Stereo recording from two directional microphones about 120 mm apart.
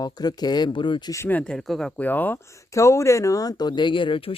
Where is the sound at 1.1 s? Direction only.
20° left (ahead or behind); by 1.9 s centre (ahead or behind).